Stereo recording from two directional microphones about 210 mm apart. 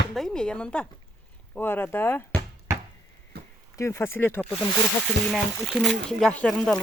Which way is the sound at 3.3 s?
50° right (ahead or behind).